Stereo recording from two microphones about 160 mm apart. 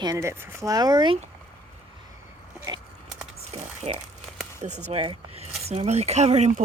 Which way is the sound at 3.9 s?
40° right (ahead or behind).